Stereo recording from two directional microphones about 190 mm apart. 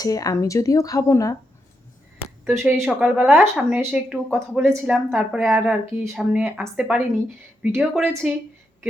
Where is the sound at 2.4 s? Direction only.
5° right (ahead or behind).